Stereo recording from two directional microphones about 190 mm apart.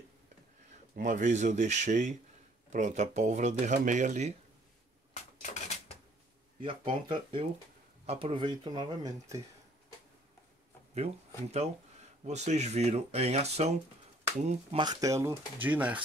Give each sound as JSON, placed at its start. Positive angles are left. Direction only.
{"t": 0.9, "sound": "speech", "side_deg": -45}
{"t": 5.4, "sound": "a sound", "side_deg": 35}
{"t": 6.6, "sound": "speech", "side_deg": -25}
{"t": 12.3, "sound": "speech", "side_deg": -35}